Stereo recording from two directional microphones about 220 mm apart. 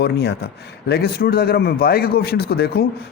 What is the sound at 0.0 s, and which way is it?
A man's voice, 45° left (ahead or behind).